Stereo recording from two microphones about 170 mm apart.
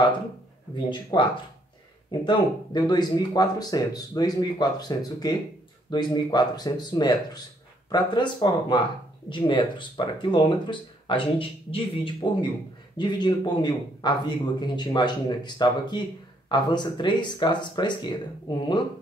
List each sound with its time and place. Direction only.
0.7 s a man's voice: 30° left (ahead or behind)